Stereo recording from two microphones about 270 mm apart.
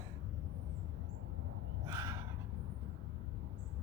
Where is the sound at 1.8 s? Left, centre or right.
Centre.